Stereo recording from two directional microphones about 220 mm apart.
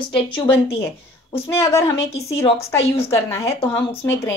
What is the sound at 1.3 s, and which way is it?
Speech, 15° left (ahead or behind).